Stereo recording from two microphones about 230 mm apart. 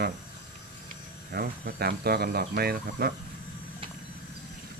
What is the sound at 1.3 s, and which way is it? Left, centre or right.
Speech, right.